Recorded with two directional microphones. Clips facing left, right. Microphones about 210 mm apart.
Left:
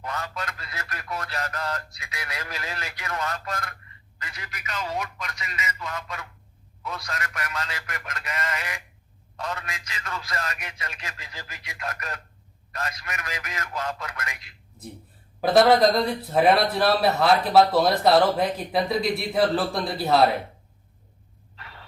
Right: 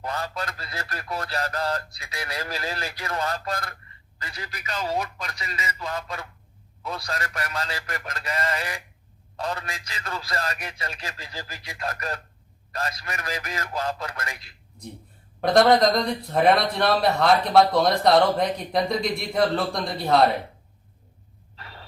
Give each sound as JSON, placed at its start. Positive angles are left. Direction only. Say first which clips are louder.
{"t": 0.0, "sound": "speech", "louder": "right 2 dB", "side_deg": -35}
{"t": 15.4, "sound": "a man's voice", "louder": "even", "side_deg": 5}
{"t": 21.5, "sound": "a sound", "louder": "right 2 dB", "side_deg": -35}